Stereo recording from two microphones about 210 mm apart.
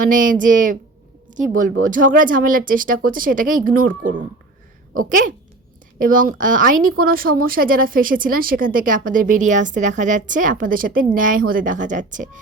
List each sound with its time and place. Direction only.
0.0 s speech: 40° right (ahead or behind)